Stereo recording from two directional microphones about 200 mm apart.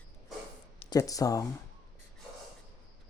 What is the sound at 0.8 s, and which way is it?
Speech, 20° left (ahead or behind).